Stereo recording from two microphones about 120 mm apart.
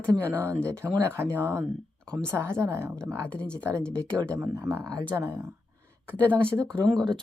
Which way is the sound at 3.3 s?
10° left (ahead or behind).